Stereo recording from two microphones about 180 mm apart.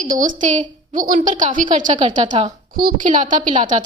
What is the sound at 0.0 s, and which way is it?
A woman's voice, 45° right (ahead or behind).